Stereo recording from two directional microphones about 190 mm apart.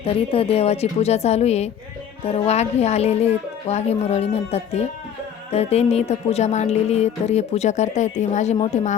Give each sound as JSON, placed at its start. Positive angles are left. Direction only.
{"t": 0.0, "sound": "speech", "side_deg": 30}